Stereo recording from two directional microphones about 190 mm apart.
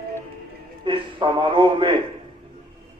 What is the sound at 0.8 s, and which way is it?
A man's voice, 25° right (ahead or behind).